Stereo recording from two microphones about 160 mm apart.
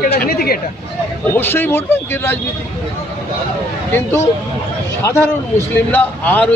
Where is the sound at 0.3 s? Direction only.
70° left (ahead or behind).